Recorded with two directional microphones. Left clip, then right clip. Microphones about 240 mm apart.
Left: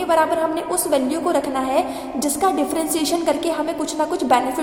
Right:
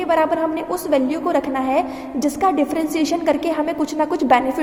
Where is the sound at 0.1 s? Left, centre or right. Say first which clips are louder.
Even; centre.